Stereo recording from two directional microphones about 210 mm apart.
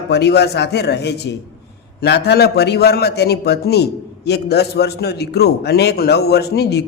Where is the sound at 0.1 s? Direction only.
50° left (ahead or behind).